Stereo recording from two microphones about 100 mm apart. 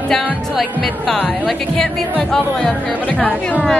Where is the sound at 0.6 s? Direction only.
5° left (ahead or behind).